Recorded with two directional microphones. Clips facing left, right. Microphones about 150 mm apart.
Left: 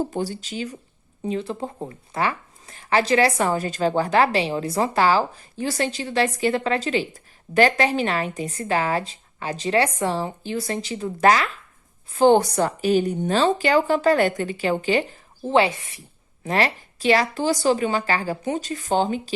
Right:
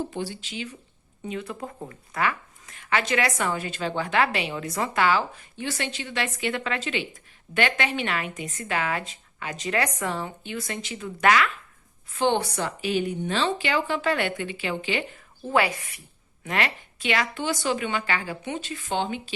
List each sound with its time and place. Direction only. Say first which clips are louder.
0.0 s speech: left 5 dB; 40° left (ahead or behind)